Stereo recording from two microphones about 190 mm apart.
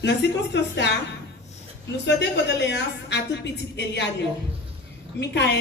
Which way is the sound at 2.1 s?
65° left (ahead or behind).